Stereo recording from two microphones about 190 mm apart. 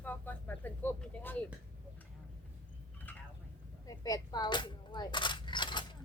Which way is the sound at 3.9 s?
20° left (ahead or behind).